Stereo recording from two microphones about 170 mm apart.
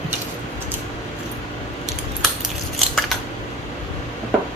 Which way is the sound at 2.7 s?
Centre (ahead or behind).